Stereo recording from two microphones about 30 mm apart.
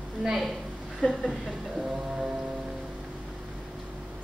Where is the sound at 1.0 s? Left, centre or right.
Left.